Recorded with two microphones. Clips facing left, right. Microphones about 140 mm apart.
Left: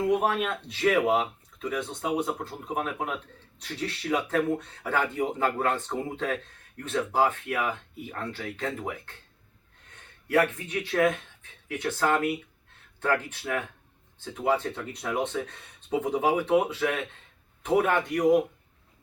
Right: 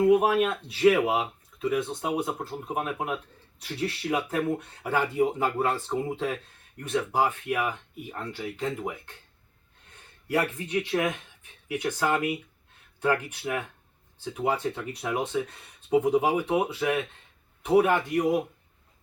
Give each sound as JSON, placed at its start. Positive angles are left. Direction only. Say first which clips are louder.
{"t": 0.1, "sound": "speech", "louder": "right 4 dB", "side_deg": -10}
{"t": 10.7, "sound": "speech", "louder": "left 2 dB", "side_deg": -15}